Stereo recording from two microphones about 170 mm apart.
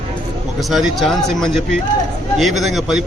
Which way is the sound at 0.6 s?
Centre (ahead or behind).